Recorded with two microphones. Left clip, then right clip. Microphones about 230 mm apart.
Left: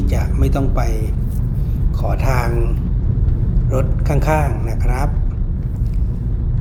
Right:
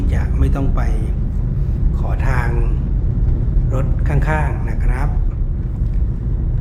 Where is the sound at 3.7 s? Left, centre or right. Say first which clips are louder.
Left 4 dB; centre.